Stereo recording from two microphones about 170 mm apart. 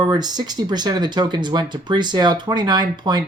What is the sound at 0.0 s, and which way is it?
Speech, 25° right (ahead or behind).